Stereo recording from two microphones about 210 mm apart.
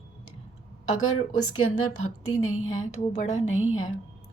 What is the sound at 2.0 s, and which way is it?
A woman's voice, 80° left.